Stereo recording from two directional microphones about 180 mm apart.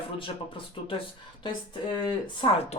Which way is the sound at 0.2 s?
30° left (ahead or behind).